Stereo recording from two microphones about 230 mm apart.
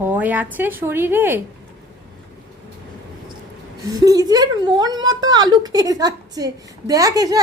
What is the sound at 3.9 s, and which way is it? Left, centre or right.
A woman's voice, centre.